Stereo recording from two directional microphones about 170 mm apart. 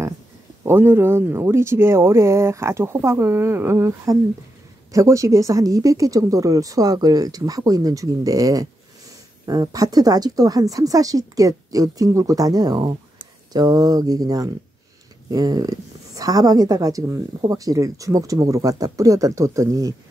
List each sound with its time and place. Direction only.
0.7 s speech: 15° right (ahead or behind)